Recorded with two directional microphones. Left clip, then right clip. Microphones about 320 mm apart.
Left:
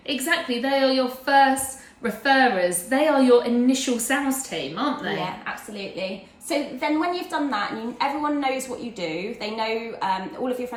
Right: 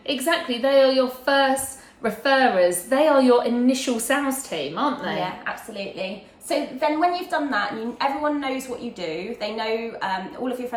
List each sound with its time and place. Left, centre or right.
0.1 s a woman's voice: centre
6.5 s a woman's voice: centre